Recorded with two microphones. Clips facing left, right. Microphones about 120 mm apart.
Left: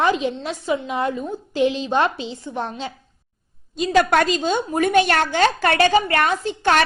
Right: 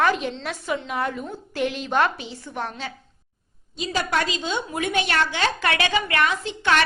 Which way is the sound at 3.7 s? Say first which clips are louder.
Left 8 dB; 50° left (ahead or behind).